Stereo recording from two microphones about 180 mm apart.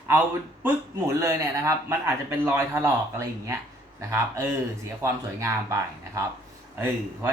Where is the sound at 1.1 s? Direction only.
15° right (ahead or behind).